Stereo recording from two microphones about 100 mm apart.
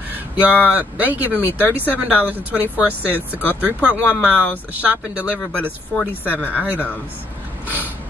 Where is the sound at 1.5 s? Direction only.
20° left (ahead or behind).